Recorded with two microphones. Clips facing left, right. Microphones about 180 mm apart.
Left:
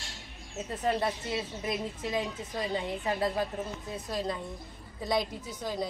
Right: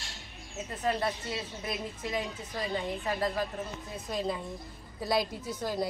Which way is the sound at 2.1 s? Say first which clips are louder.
Left 2 dB; 25° left (ahead or behind).